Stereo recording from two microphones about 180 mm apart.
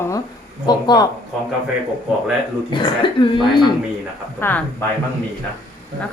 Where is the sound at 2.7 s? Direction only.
25° left (ahead or behind).